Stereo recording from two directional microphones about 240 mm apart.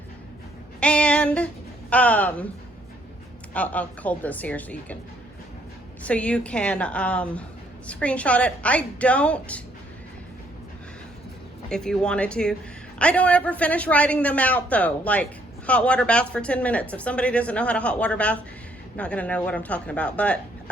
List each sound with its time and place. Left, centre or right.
0.8 s female singing: centre
1.9 s speech: centre
3.5 s speech: centre
6.1 s speech: centre
11.7 s speech: centre